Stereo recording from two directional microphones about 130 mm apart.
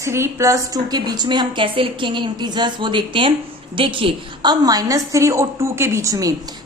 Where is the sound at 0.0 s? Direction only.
20° right (ahead or behind).